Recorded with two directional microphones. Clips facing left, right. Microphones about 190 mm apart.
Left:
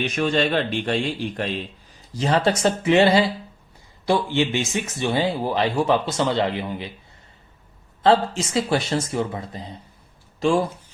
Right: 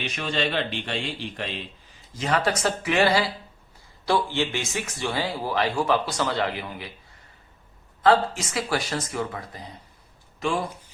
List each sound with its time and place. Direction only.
0.1 s a man's voice: 45° left (ahead or behind)
2.1 s speech: 30° left (ahead or behind)
8.0 s speech: 25° left (ahead or behind)